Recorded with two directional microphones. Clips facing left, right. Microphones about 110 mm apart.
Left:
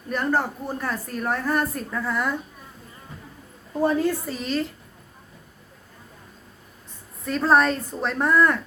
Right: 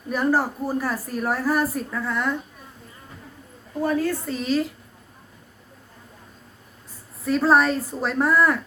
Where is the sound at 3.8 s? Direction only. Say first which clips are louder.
Left 1 dB; 25° left (ahead or behind).